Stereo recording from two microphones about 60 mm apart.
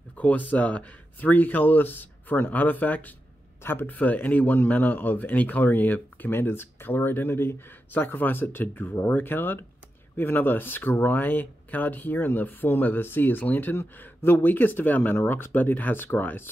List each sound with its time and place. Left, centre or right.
0.2 s speech: left